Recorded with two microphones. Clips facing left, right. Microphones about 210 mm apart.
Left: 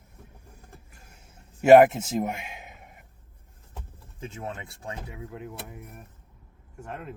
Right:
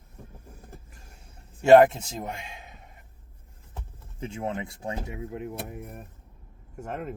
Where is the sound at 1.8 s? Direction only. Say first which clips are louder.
Left 1 dB; 15° left (ahead or behind).